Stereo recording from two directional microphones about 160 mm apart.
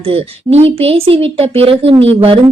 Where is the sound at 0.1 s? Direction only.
40° right (ahead or behind).